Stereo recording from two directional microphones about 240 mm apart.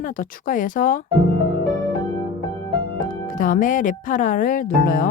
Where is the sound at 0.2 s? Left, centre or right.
Left.